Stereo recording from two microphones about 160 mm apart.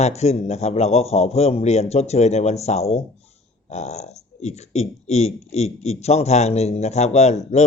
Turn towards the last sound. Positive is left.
turn(degrees=45)  # may be behind; listen again after turning